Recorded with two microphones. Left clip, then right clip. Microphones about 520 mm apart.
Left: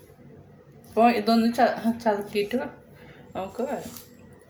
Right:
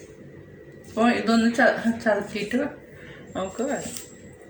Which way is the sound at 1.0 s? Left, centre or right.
Left.